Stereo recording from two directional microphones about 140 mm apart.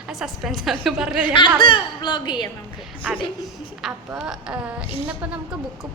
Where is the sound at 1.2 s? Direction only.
35° left (ahead or behind).